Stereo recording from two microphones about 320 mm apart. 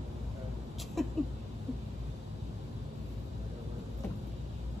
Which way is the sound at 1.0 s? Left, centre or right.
Centre.